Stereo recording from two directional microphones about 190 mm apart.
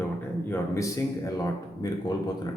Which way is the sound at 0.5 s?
15° left (ahead or behind).